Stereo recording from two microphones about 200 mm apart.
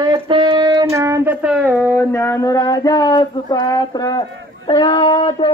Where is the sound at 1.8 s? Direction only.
10° left (ahead or behind).